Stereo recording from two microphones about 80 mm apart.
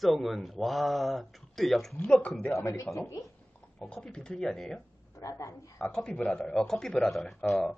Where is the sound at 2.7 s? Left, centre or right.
Left.